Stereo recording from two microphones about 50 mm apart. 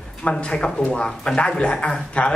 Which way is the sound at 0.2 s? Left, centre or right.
Left.